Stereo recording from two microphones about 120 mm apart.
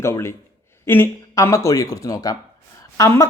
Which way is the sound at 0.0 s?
20° left (ahead or behind).